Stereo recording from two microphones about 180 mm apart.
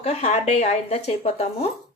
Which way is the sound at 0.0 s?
40° left (ahead or behind).